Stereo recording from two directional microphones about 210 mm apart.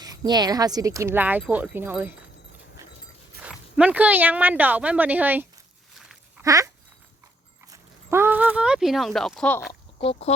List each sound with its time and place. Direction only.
0.0 s speech: 20° right (ahead or behind)
3.4 s speech: 5° right (ahead or behind)
7.7 s speech: 10° right (ahead or behind)
10.0 s speech: 30° left (ahead or behind)